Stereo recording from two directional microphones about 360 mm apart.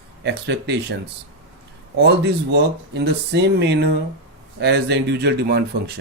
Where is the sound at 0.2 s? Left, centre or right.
Right.